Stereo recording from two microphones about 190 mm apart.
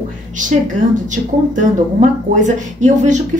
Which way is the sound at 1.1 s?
40° right (ahead or behind).